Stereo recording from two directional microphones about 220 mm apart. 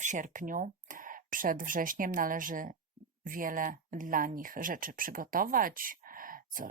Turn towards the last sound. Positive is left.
turn(degrees=-40)  # may be behind; listen again after turning